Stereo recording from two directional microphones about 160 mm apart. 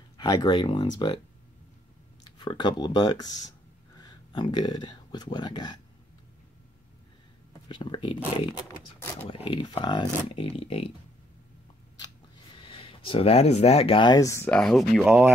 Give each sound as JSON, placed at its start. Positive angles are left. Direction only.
{"t": 0.2, "sound": "speech", "side_deg": 25}
{"t": 2.2, "sound": "speech", "side_deg": 30}
{"t": 7.6, "sound": "speech", "side_deg": 30}
{"t": 8.6, "sound": "speech", "side_deg": 15}
{"t": 9.3, "sound": "speech", "side_deg": 30}
{"t": 12.5, "sound": "speech", "side_deg": 35}